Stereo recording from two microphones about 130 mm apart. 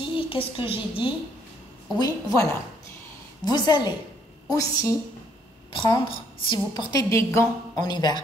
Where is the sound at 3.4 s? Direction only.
35° left (ahead or behind).